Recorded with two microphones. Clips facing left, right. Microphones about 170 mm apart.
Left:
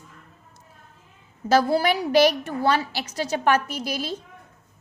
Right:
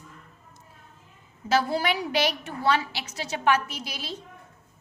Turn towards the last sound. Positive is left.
turn(degrees=45)  # may be behind; listen again after turning